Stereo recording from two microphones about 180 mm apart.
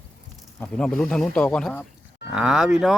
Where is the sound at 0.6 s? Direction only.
5° left (ahead or behind).